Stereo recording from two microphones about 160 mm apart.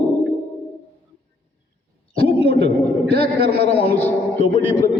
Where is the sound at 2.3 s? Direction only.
35° left (ahead or behind).